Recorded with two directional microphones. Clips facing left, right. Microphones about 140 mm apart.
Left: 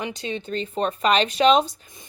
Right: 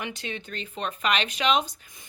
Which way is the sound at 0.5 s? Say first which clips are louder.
Left 11 dB; 35° left (ahead or behind).